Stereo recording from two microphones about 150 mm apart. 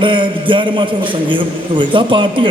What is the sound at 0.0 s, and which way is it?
A man's voice, 35° right (ahead or behind).